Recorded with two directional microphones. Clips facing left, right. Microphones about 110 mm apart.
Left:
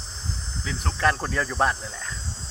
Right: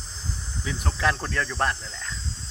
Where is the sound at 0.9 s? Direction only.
Centre (ahead or behind).